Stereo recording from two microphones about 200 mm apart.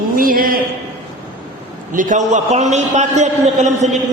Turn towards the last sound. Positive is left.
turn(degrees=-35)  # may be behind; listen again after turning